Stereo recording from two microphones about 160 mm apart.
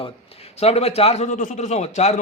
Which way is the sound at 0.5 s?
40° left (ahead or behind).